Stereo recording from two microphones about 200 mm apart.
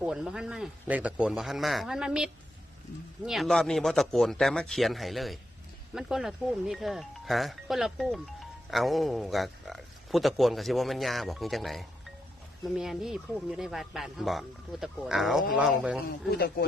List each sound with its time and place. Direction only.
0.0 s speech: 5° right (ahead or behind)
16.3 s speech: 50° left (ahead or behind)